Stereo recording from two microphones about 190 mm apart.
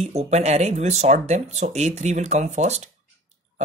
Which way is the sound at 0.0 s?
35° right (ahead or behind).